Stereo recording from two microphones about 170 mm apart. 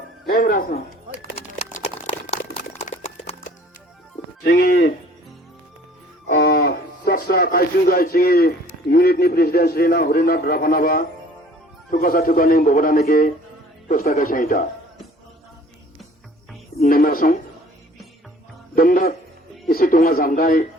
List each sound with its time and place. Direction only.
0.3 s speech: 60° left (ahead or behind)
1.4 s a sound: 40° left (ahead or behind)
2.7 s horse: 40° left (ahead or behind)
4.4 s a man's voice: 60° left (ahead or behind)
6.2 s a man's voice: 85° left; by 14.7 s 55° left (ahead or behind)
16.8 s a sound: 60° left (ahead or behind)
18.7 s a man's voice: 55° left (ahead or behind)